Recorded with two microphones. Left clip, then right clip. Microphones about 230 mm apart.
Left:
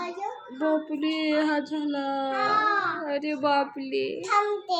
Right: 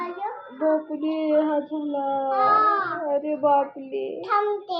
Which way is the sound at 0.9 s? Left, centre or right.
Left.